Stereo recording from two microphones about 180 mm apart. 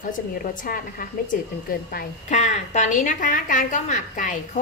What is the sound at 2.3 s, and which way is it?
A woman's voice, 40° left (ahead or behind).